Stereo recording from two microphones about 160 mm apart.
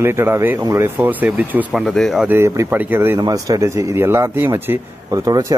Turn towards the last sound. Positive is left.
turn(degrees=-20)  # may be behind; listen again after turning